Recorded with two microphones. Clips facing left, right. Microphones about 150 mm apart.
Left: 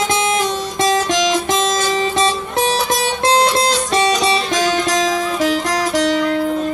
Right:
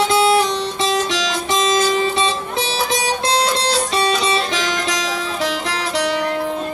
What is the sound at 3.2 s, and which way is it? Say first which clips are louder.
Music: left 6 dB; 45° left (ahead or behind).